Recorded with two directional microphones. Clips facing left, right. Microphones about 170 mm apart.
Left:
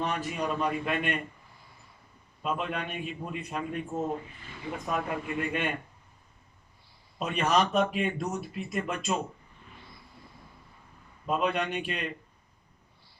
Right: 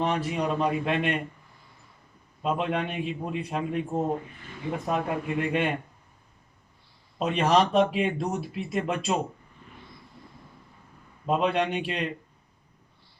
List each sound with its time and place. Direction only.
0.0 s speech: 30° right (ahead or behind)
2.4 s speech: 25° right (ahead or behind)
7.2 s speech: 30° right (ahead or behind)
11.3 s speech: 30° right (ahead or behind)